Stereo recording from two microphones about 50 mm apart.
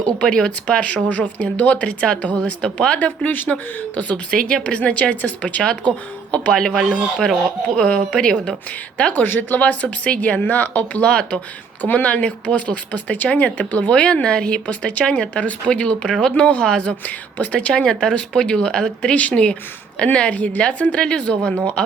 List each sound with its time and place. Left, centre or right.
0.0 s speech: centre
3.2 s speech: left
4.3 s speech: centre
7.9 s speech: centre
9.2 s speech: left
9.6 s speech: left
11.8 s speech: left
17.1 s speech: left